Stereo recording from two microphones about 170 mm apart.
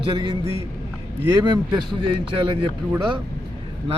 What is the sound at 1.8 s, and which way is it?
Speech, 30° right (ahead or behind).